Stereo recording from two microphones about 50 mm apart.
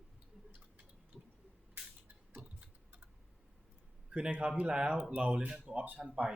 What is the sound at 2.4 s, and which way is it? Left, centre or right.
Tick-tock, right.